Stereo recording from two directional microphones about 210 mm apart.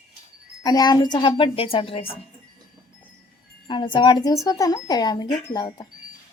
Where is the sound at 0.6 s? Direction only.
20° left (ahead or behind).